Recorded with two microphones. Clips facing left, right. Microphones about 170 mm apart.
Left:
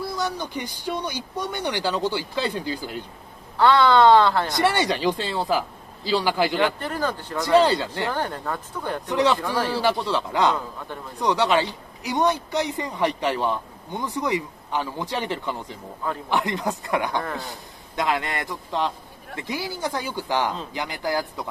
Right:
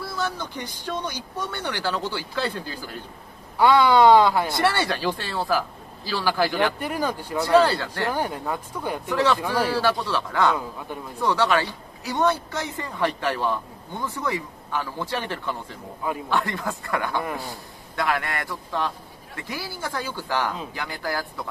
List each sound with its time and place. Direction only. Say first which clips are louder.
0.0 s speech: left 2 dB; 15° left (ahead or behind)
3.5 s speech: even; 10° right (ahead or behind)
4.5 s speech: left 1 dB; 20° left (ahead or behind)
6.8 s speech: even; 10° right (ahead or behind)
7.4 s speech: left 1 dB; 20° left (ahead or behind)
8.1 s speech: right 1 dB; 10° right (ahead or behind)
9.1 s a man's voice: left 1 dB; 15° left (ahead or behind)